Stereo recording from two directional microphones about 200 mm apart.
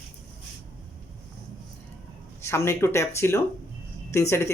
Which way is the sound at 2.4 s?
15° left (ahead or behind).